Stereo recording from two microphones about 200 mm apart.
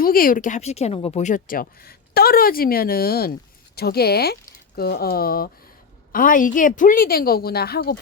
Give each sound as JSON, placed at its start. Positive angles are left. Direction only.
{"t": 0.0, "sound": "speech", "side_deg": 45}